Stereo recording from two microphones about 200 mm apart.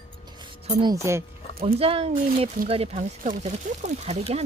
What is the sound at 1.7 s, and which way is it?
Speech, 30° right (ahead or behind).